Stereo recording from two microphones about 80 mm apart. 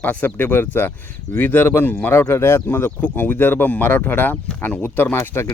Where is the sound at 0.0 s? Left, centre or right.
Centre.